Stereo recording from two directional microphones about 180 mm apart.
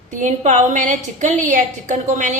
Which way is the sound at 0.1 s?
45° right (ahead or behind).